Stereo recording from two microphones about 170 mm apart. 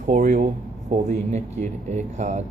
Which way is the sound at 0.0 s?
45° right (ahead or behind).